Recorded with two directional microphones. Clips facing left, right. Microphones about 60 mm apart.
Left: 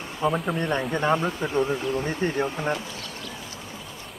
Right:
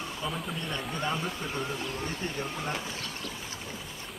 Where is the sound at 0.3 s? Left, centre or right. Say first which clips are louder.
Left 12 dB; left.